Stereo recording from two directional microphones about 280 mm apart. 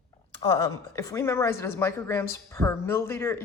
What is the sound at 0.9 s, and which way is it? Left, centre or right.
A woman's voice, centre.